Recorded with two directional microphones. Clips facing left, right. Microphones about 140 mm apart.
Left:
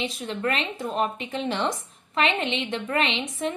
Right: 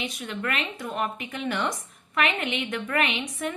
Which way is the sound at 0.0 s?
30° left (ahead or behind).